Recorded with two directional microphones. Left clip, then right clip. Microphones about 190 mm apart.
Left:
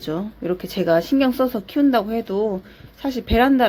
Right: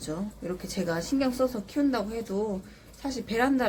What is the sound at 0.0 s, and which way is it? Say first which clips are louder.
Speech: left 9 dB; 40° left (ahead or behind).